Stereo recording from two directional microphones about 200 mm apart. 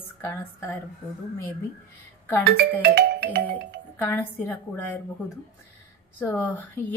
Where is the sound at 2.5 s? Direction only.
50° right (ahead or behind).